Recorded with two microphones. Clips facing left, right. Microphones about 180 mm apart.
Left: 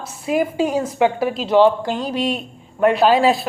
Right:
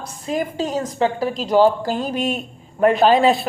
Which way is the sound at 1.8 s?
5° right (ahead or behind).